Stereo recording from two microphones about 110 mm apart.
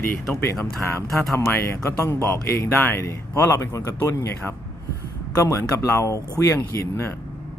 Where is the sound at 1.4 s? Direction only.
25° left (ahead or behind).